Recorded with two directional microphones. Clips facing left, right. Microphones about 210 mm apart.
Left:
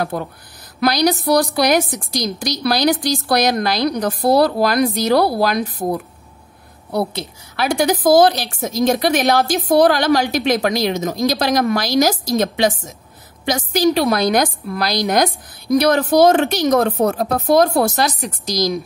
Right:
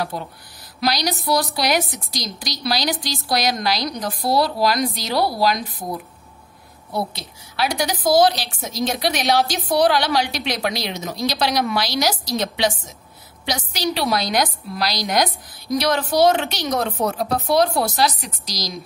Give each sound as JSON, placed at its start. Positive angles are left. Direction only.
{"t": 0.0, "sound": "a woman's voice", "side_deg": 50}
{"t": 7.5, "sound": "a woman's voice", "side_deg": 50}